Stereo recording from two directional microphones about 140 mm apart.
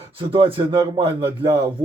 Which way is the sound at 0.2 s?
40° right (ahead or behind).